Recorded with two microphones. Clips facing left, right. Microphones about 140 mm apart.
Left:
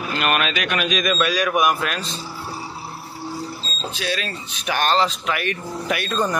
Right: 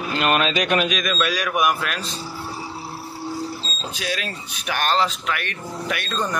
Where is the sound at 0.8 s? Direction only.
Centre (ahead or behind).